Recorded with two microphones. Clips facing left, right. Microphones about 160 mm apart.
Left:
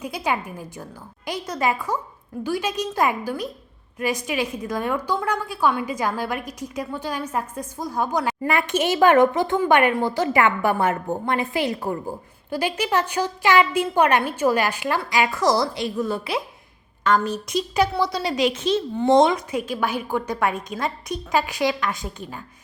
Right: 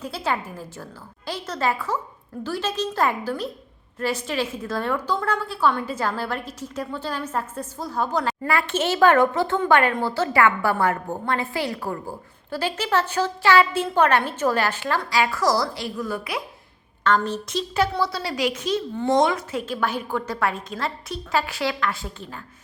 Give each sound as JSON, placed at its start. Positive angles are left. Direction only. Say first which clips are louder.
{"t": 0.0, "sound": "a woman's voice", "louder": "left 1 dB", "side_deg": 15}
{"t": 17.2, "sound": "a woman's voice", "louder": "left 2 dB", "side_deg": 10}